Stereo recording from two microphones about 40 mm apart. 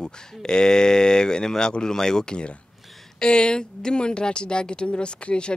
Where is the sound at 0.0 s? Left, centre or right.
Centre.